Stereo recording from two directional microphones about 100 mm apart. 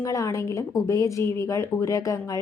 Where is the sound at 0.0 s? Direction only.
35° left (ahead or behind).